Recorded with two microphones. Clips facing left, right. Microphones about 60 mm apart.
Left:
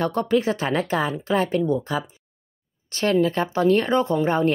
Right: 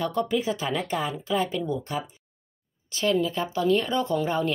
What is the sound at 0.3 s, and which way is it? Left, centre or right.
Speech, left.